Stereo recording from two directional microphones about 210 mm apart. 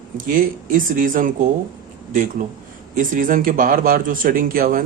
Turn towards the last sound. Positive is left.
turn(degrees=-40)  # may be behind; listen again after turning